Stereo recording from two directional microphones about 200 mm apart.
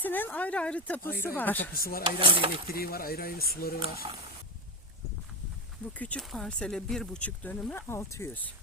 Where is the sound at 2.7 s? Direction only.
50° left (ahead or behind).